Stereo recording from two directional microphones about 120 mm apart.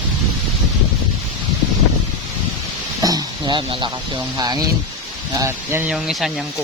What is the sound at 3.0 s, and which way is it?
Speech, 30° right (ahead or behind).